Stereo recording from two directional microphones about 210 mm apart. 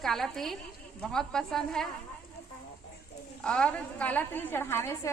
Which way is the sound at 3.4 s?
5° left (ahead or behind).